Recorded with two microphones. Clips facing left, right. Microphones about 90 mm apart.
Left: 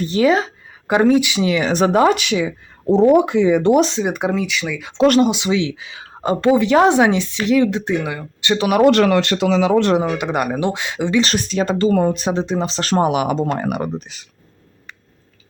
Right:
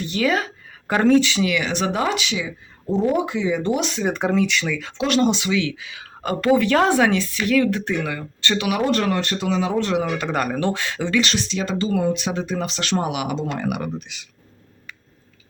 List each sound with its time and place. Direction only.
0.0 s speech: 30° left (ahead or behind); by 1.4 s 10° left (ahead or behind)
1.4 s speech: 35° left (ahead or behind); by 2.5 s 55° left (ahead or behind)
2.9 s speech: 70° left (ahead or behind)
4.0 s speech: 10° left (ahead or behind)
5.5 s a woman's voice: 25° left (ahead or behind)
8.5 s speech: 40° left (ahead or behind)
8.8 s speech: 80° left
10.0 s speech: 15° left (ahead or behind)
11.2 s speech: 45° left (ahead or behind)